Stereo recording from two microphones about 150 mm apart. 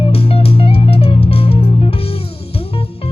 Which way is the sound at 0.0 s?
40° left (ahead or behind).